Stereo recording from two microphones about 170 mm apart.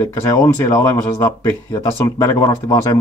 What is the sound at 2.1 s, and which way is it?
Speech, 20° left (ahead or behind).